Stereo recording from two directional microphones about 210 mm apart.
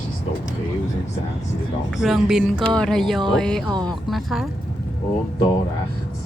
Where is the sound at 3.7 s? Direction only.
20° right (ahead or behind).